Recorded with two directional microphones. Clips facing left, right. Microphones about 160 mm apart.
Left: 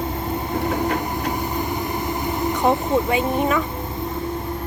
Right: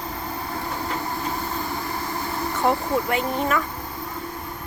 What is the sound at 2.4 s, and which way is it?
Vehicle, 20° left (ahead or behind).